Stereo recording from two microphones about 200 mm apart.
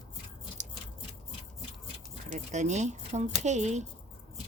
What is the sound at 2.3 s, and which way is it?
Speech, 35° right (ahead or behind).